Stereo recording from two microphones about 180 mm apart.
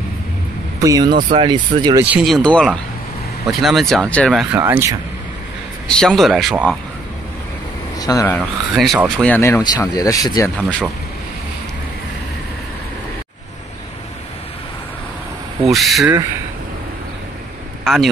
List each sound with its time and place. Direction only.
0.7 s speech: 20° right (ahead or behind)
2.0 s speech: centre (ahead or behind)
4.3 s speech: 5° right (ahead or behind)
5.9 s speech: 5° left (ahead or behind)
8.0 s speech: 20° left (ahead or behind)
8.4 s speech: centre (ahead or behind)
9.2 s speech: 10° left (ahead or behind)
10.6 s speech: 5° left (ahead or behind)
15.6 s speech: centre (ahead or behind)
17.8 s speech: centre (ahead or behind)